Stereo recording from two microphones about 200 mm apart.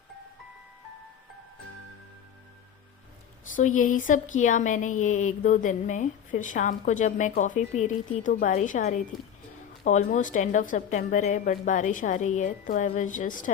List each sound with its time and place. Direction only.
3.5 s a woman's voice: 40° left (ahead or behind)